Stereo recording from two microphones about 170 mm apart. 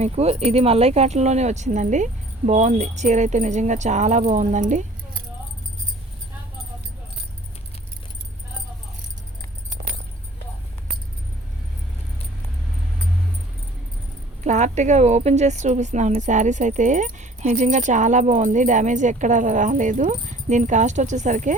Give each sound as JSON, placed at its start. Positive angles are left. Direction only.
{"t": 0.0, "sound": "speech", "side_deg": -40}
{"t": 14.4, "sound": "speech", "side_deg": -45}